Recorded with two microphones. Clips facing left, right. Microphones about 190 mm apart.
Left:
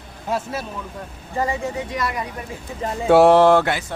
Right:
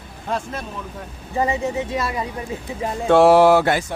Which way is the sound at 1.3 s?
20° right (ahead or behind).